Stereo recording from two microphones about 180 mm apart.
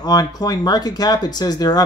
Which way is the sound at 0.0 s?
20° left (ahead or behind).